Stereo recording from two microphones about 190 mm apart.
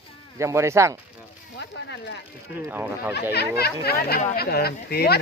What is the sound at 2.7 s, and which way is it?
Speech, 10° right (ahead or behind).